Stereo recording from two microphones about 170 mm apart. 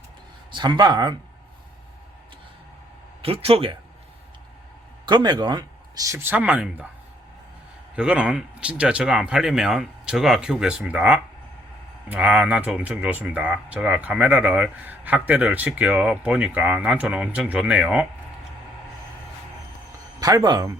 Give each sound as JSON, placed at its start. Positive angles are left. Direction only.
{"t": 0.5, "sound": "speech", "side_deg": -25}
{"t": 3.2, "sound": "speech", "side_deg": -35}
{"t": 5.0, "sound": "speech", "side_deg": -25}
{"t": 7.9, "sound": "speech", "side_deg": -5}
{"t": 20.1, "sound": "speech", "side_deg": -20}